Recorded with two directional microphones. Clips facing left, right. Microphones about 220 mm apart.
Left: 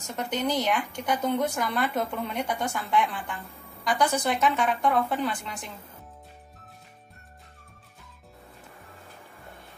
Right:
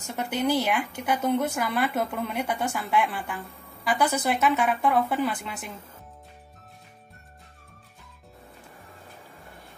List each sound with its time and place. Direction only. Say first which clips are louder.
0.1 s a woman's voice: right 2 dB; 5° right (ahead or behind)